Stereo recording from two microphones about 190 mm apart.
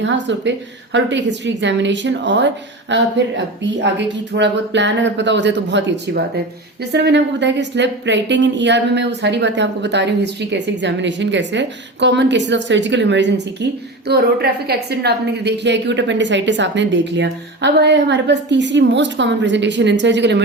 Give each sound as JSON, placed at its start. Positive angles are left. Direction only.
{"t": 0.0, "sound": "a woman's voice", "side_deg": -70}